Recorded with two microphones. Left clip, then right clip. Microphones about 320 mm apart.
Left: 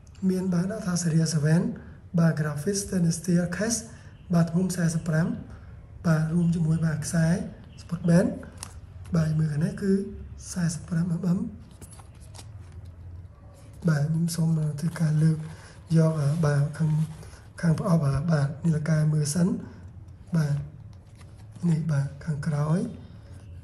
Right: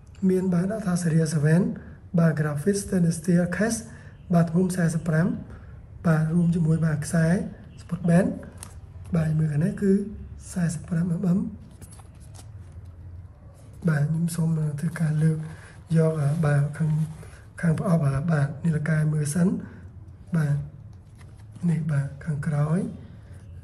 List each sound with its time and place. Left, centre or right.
0.2 s speech: centre
13.7 s speech: centre
21.5 s speech: centre